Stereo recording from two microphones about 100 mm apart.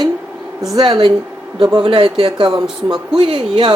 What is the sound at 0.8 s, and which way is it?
A man's voice, 50° right (ahead or behind).